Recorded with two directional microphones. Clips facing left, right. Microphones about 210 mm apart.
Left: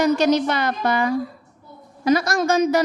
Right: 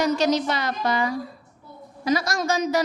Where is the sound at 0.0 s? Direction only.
55° left (ahead or behind).